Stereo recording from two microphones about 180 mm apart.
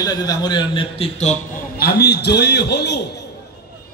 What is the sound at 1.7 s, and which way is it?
A man's voice, 60° left (ahead or behind).